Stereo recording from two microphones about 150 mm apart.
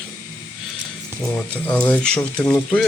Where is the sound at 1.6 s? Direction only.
10° left (ahead or behind).